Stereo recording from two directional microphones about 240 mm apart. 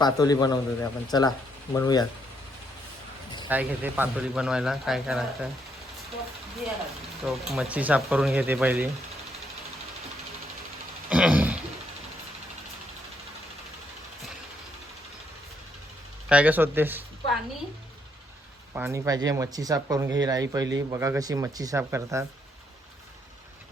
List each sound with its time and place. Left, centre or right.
0.0 s a man's voice: centre
3.5 s speech: centre
7.3 s speech: centre
11.1 s a sound: centre
16.3 s speech: centre
18.7 s speech: centre